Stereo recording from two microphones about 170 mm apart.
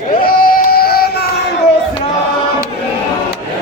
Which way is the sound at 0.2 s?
60° left (ahead or behind).